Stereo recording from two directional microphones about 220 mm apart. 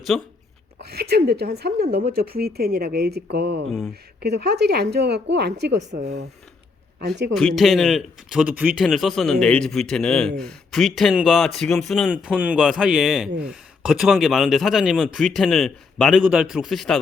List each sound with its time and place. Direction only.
0.1 s speech: centre (ahead or behind)
0.8 s a woman's voice: 45° right (ahead or behind)
3.7 s speech: centre (ahead or behind)
4.2 s a woman's voice: 50° right (ahead or behind)
5.9 s speech: 30° right (ahead or behind)
7.3 s speech: centre (ahead or behind)